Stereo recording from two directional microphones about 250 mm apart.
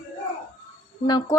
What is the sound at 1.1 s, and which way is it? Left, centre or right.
Speech, centre.